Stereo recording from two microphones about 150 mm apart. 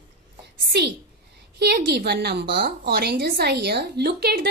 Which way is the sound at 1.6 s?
90° right.